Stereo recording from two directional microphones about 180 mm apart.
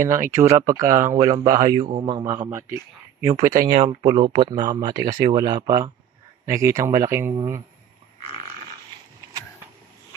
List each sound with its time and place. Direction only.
0.0 s speech: 15° right (ahead or behind)
3.4 s speech: 45° right (ahead or behind)
4.0 s speech: 30° right (ahead or behind)